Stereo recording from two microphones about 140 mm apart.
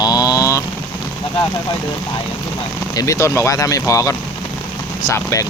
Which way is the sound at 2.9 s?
25° left (ahead or behind).